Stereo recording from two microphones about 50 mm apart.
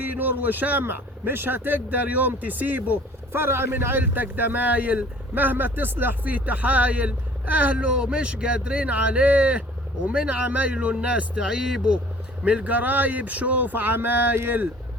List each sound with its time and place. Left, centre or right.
0.0 s a man's voice: right
3.3 s a man's voice: right
6.3 s speech: right; by 11.9 s centre
12.5 s a man's voice: right